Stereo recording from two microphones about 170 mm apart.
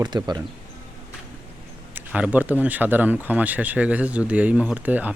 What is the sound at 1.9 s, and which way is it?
Speech, 10° right (ahead or behind).